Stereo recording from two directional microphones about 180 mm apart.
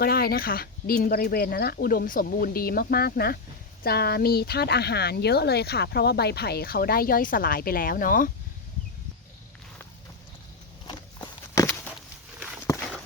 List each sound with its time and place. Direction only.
0.0 s speech: 55° left (ahead or behind)
10.8 s walk: 20° left (ahead or behind)